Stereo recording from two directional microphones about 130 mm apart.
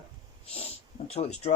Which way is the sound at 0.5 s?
50° left (ahead or behind).